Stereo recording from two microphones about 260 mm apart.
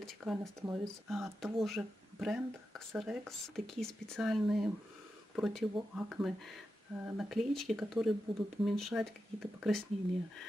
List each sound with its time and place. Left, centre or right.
0.0 s speech: centre
1.0 s speech: centre
8.3 s speech: centre
8.6 s speech: centre